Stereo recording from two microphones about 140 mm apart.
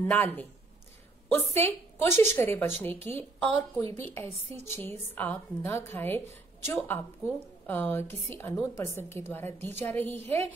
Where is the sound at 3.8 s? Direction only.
45° right (ahead or behind).